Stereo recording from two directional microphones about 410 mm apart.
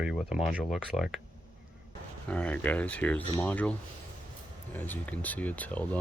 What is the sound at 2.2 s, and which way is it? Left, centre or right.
Speech, centre.